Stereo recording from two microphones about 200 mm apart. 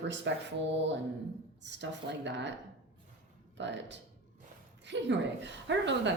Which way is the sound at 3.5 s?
60° right (ahead or behind).